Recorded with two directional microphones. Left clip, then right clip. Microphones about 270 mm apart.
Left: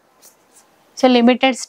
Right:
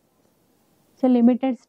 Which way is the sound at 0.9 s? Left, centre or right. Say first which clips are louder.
Left 7 dB; centre.